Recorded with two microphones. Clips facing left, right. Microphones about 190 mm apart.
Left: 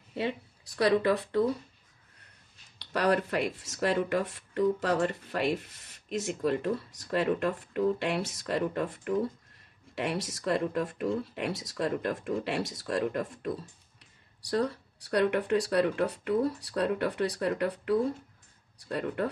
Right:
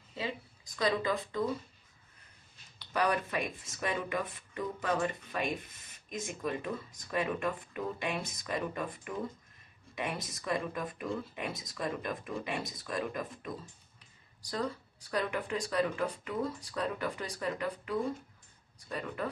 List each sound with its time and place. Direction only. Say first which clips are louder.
0.1 s speech: left 6 dB; 65° left (ahead or behind)
2.8 s speech: left 4 dB; 70° left (ahead or behind)